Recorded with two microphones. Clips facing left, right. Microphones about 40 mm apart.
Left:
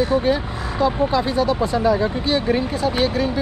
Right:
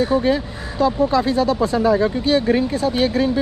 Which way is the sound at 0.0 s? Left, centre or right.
Left.